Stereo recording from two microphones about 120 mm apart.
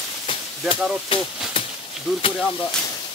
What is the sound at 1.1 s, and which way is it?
Speech, 45° left (ahead or behind).